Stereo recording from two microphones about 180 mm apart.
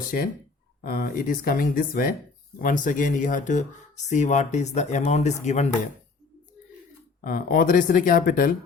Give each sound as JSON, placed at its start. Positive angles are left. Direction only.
{"t": 0.1, "sound": "speech", "side_deg": 55}
{"t": 7.2, "sound": "speech", "side_deg": 50}